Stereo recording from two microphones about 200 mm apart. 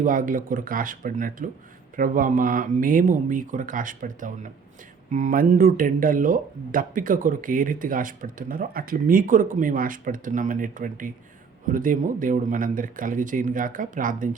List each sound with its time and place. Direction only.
0.0 s speech: 40° right (ahead or behind)